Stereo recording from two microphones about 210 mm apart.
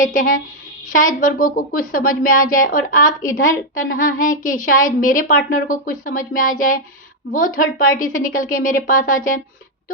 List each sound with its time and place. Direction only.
0.0 s a woman's voice: 40° left (ahead or behind)